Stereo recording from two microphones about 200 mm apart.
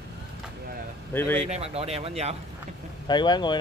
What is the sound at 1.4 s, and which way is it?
Speech, 30° right (ahead or behind).